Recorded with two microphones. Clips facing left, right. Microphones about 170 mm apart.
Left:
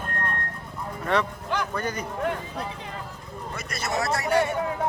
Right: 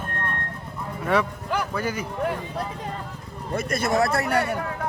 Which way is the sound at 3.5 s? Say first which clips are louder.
Right 7 dB; 55° right (ahead or behind).